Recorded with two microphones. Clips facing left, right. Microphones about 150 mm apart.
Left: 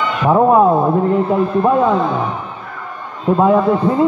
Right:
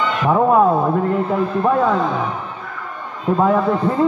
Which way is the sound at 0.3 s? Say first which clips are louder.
Left 3 dB; 25° left (ahead or behind).